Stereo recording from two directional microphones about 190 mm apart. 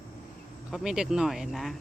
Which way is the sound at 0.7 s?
5° right (ahead or behind).